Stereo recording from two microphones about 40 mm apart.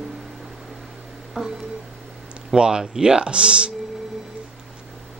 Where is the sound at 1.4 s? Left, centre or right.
Centre.